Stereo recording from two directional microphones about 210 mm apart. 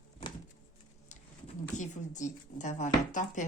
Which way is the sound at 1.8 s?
35° left (ahead or behind).